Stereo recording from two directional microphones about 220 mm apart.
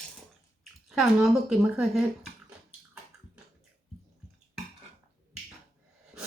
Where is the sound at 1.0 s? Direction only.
Centre (ahead or behind).